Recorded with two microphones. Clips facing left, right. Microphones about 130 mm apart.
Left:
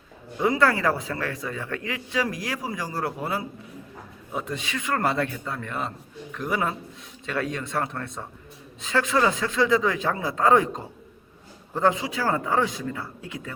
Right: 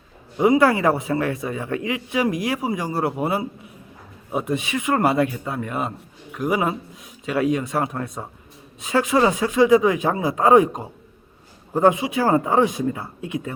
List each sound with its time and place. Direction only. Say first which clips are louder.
0.3 s a man's voice: right 6 dB; 20° right (ahead or behind)